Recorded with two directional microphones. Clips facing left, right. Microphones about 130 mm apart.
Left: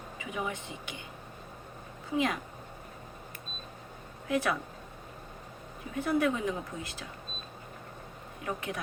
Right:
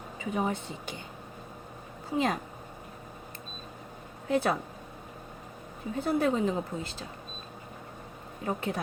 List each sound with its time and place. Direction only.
0.2 s speech: 40° right (ahead or behind)
2.0 s speech: 35° right (ahead or behind)
4.3 s speech: 30° right (ahead or behind)
6.0 s speech: 30° right (ahead or behind)
8.4 s speech: 30° right (ahead or behind)